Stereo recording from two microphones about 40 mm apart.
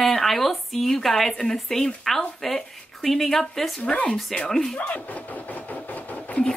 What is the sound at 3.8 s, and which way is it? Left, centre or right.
Speech, left.